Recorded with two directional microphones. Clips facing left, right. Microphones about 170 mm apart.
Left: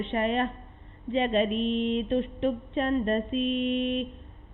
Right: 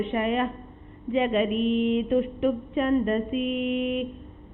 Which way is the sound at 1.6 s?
10° right (ahead or behind).